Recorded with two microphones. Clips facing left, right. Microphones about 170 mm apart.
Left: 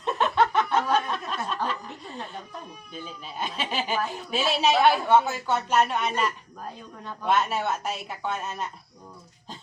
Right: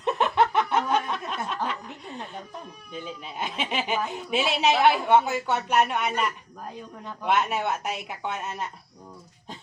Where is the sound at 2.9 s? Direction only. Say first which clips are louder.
Right 4 dB; 20° right (ahead or behind).